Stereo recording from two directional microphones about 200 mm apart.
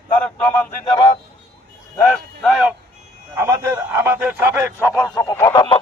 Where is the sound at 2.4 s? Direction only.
5° right (ahead or behind).